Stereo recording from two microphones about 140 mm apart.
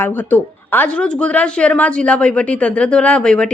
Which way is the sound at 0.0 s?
15° left (ahead or behind).